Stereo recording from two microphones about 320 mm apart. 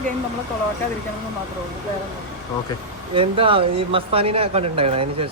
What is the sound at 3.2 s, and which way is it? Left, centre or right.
Speech, centre.